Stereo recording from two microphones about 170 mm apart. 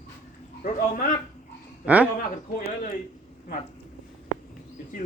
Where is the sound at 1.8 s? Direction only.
10° right (ahead or behind).